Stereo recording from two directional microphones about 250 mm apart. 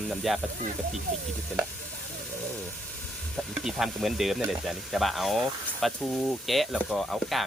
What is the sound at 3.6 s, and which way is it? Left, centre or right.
Speech, centre.